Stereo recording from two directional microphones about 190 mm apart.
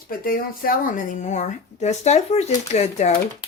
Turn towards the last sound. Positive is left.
turn(degrees=35)  # may be behind; listen again after turning